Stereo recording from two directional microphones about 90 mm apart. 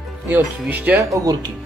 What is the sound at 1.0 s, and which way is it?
Speech, 35° right (ahead or behind).